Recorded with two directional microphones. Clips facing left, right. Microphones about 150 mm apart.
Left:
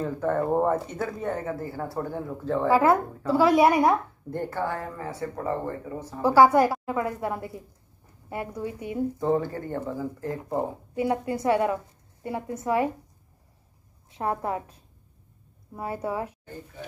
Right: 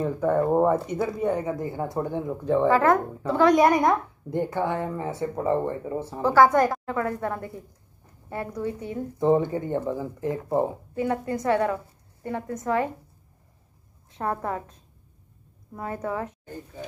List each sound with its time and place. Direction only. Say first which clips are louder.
0.0 s speech: right 3 dB; 10° right (ahead or behind)
2.7 s a woman's voice: even; 10° left (ahead or behind)
4.3 s speech: right 3 dB; 15° right (ahead or behind)
6.2 s a woman's voice: left 1 dB; 10° left (ahead or behind)
9.2 s speech: right 7 dB; 20° right (ahead or behind)
11.0 s a woman's voice: even; 15° left (ahead or behind)
14.1 s a woman's voice: even; 10° left (ahead or behind)